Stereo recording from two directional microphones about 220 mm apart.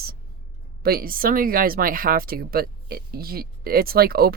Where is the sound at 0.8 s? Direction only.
45° right (ahead or behind).